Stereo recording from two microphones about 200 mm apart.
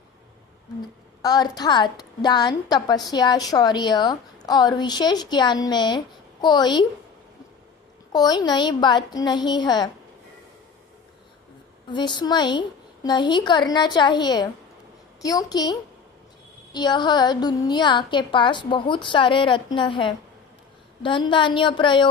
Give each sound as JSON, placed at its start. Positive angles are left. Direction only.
{"t": 1.2, "sound": "a woman's voice", "side_deg": 20}
{"t": 8.1, "sound": "a woman's voice", "side_deg": 20}
{"t": 11.9, "sound": "a woman's voice", "side_deg": 20}